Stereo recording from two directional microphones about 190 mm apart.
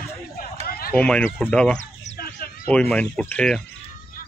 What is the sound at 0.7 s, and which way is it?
Run, 50° left (ahead or behind).